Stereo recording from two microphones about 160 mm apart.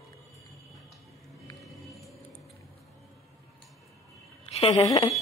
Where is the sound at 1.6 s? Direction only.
Centre (ahead or behind).